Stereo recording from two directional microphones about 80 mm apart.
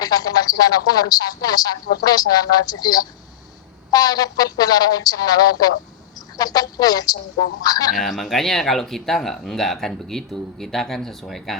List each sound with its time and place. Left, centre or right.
0.0 s a woman's voice: left
7.9 s speech: centre